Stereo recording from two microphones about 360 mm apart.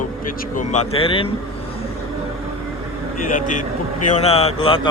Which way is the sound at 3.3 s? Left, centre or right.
Left.